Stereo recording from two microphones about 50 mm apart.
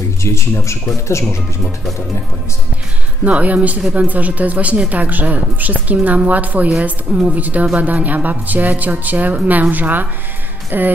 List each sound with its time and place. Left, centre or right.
0.2 s speech: left
3.3 s speech: right